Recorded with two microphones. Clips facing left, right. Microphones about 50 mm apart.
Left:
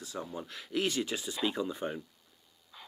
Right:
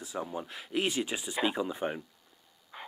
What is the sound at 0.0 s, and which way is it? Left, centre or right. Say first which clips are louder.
Speech: right 3 dB; centre.